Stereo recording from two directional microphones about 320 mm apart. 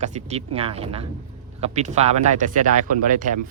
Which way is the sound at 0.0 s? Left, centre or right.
Right.